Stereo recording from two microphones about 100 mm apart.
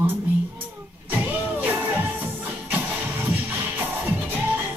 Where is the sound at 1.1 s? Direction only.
15° right (ahead or behind).